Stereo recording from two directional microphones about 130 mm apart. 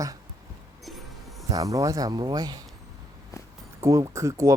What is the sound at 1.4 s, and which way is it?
Speech, 25° right (ahead or behind).